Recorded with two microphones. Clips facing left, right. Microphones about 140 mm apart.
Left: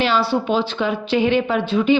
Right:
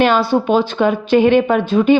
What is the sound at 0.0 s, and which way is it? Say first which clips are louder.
A woman's voice: right 5 dB; 50° right (ahead or behind).